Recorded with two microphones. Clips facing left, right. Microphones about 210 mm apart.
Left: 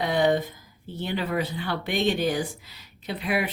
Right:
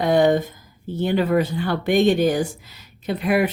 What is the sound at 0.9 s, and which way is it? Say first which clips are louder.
Speech: right 8 dB; 45° right (ahead or behind).